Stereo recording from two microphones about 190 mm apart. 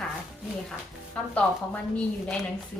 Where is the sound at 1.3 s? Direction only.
5° left (ahead or behind).